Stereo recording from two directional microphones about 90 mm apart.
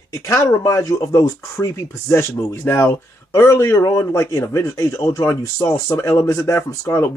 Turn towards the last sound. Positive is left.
turn(degrees=30)  # may be behind; listen again after turning